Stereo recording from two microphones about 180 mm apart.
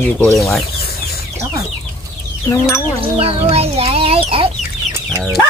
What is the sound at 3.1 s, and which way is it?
Speech, 35° right (ahead or behind).